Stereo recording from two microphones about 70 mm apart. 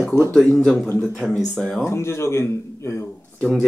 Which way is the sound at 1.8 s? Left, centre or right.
Left.